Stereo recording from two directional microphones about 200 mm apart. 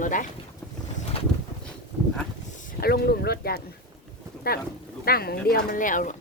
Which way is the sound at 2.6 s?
45° left (ahead or behind).